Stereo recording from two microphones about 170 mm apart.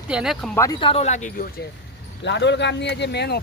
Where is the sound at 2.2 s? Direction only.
90° left.